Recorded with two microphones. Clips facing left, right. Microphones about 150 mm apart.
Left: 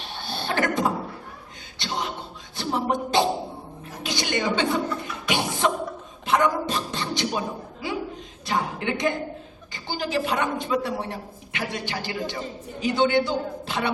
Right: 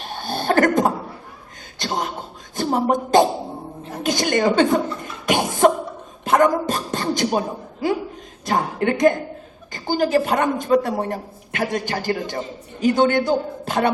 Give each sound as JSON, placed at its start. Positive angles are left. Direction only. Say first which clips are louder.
{"t": 0.0, "sound": "a sound", "louder": "right 6 dB", "side_deg": -45}
{"t": 1.8, "sound": "beatboxing", "louder": "right 5 dB", "side_deg": -45}
{"t": 2.6, "sound": "a woman's voice", "louder": "right 6 dB", "side_deg": -45}
{"t": 5.2, "sound": "beatboxing", "louder": "right 8 dB", "side_deg": -45}
{"t": 8.4, "sound": "a woman's voice", "louder": "right 6 dB", "side_deg": -45}